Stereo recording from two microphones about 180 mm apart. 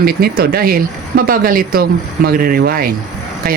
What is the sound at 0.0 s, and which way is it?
Speech, 55° right (ahead or behind).